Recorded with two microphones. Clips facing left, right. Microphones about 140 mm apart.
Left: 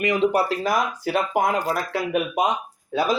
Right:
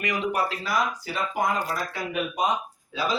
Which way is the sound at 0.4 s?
50° left (ahead or behind).